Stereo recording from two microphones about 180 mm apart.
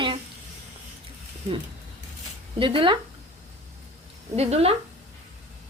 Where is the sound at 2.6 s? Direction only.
30° right (ahead or behind).